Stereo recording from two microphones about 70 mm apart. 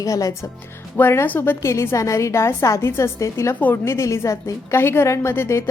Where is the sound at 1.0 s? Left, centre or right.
Left.